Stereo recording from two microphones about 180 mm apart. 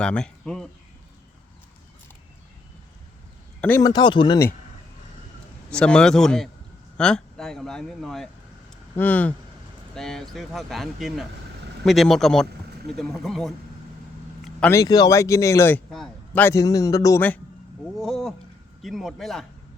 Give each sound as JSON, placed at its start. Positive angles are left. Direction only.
{"t": 0.0, "sound": "a man's voice", "side_deg": 5}
{"t": 3.6, "sound": "speech", "side_deg": 10}
{"t": 3.8, "sound": "speech", "side_deg": 25}
{"t": 5.7, "sound": "a man's voice", "side_deg": 5}
{"t": 14.7, "sound": "a man's voice", "side_deg": 20}